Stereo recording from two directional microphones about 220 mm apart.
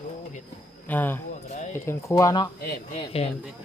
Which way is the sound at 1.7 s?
10° left (ahead or behind).